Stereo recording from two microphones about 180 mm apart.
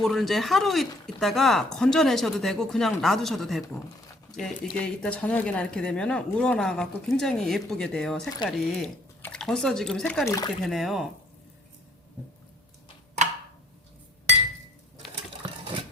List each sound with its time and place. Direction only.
0.0 s speech: centre (ahead or behind)
10.2 s speech: 20° left (ahead or behind)
10.6 s speech: centre (ahead or behind)
13.2 s a sound: 40° right (ahead or behind)